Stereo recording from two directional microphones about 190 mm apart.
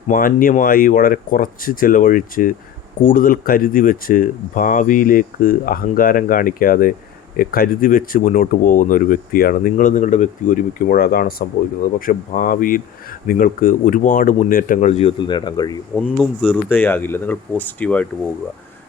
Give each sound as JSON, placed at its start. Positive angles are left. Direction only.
{"t": 0.1, "sound": "speech", "side_deg": 45}
{"t": 15.2, "sound": "speech", "side_deg": 25}
{"t": 16.0, "sound": "speech", "side_deg": 0}
{"t": 16.7, "sound": "speech", "side_deg": 10}